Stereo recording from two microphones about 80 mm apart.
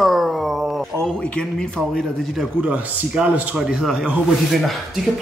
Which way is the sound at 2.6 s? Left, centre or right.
Centre.